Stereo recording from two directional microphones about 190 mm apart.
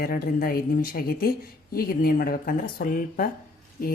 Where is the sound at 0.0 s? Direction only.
50° left (ahead or behind).